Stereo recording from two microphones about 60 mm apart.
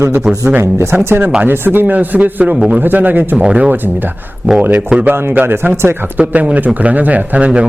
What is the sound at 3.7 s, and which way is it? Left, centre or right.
Speech, right.